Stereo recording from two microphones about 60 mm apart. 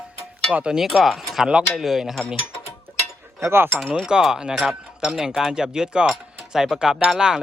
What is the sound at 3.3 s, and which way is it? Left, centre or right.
Speech, right.